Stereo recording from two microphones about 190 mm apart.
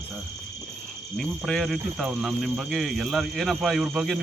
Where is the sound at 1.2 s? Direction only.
Centre (ahead or behind).